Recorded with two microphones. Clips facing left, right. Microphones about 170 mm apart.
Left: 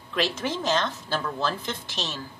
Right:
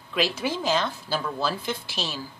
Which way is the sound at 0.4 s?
5° right (ahead or behind).